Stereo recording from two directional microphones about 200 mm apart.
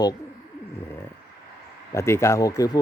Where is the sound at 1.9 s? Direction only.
15° left (ahead or behind).